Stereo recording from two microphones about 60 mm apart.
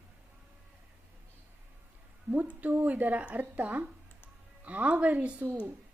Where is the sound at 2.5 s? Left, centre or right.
Right.